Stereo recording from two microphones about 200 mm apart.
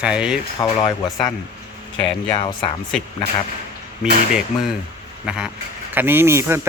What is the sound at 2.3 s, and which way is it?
Speech, 25° left (ahead or behind).